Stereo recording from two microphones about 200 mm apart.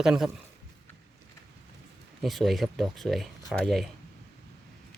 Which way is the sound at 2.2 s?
Centre (ahead or behind).